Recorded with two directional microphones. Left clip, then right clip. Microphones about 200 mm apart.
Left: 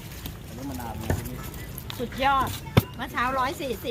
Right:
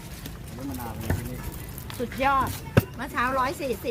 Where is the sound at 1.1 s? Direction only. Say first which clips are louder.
Left 2 dB; 40° left (ahead or behind).